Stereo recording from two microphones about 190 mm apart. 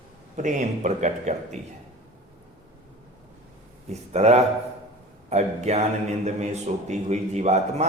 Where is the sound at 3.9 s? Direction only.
35° right (ahead or behind).